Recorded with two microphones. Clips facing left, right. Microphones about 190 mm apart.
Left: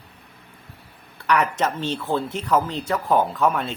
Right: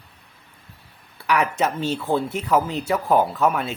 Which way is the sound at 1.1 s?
5° right (ahead or behind).